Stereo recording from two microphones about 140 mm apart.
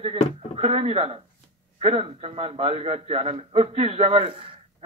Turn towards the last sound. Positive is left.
turn(degrees=-40)  # may be behind; listen again after turning